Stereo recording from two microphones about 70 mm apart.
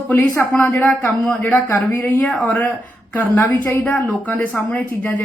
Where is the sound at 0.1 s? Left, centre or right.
Left.